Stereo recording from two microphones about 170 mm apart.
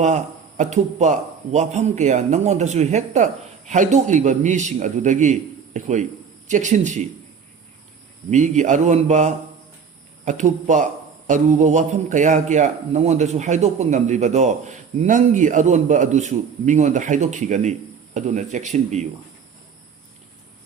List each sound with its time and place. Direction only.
0.0 s a man's voice: 45° right (ahead or behind)
8.3 s a man's voice: 45° right (ahead or behind)